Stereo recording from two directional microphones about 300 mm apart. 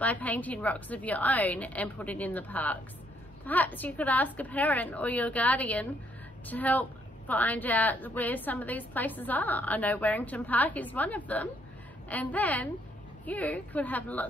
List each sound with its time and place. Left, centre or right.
0.0 s a woman's voice: centre